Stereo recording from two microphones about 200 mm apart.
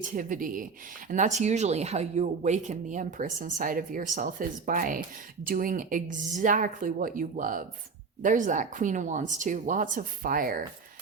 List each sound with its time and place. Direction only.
0.0 s speech: 40° right (ahead or behind)